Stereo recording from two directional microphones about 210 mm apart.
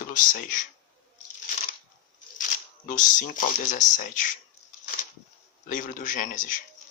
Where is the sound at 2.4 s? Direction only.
40° left (ahead or behind).